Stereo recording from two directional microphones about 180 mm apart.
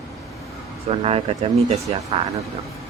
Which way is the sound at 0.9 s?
30° right (ahead or behind).